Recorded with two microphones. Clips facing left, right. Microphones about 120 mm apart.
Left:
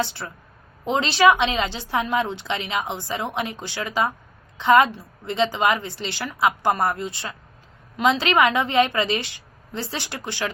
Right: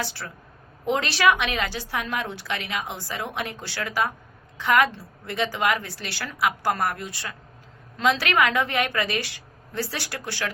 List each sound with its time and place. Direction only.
0.0 s a woman's voice: 25° left (ahead or behind)